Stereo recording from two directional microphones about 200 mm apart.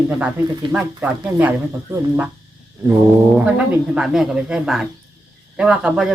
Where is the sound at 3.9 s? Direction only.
5° right (ahead or behind).